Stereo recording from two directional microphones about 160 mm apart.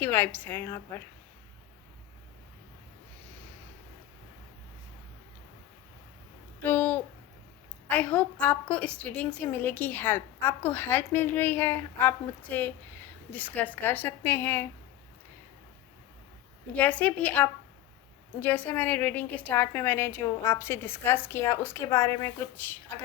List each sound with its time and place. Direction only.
0.0 s a woman's voice: 10° left (ahead or behind)
6.6 s a sound: 10° left (ahead or behind)
7.9 s a woman's voice: 10° left (ahead or behind)
16.7 s a woman's voice: 10° left (ahead or behind)